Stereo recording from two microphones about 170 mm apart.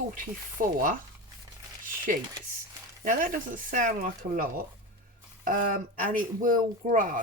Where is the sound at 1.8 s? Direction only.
55° right (ahead or behind).